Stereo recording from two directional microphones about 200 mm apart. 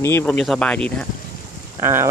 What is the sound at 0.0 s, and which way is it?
Speech, 10° left (ahead or behind).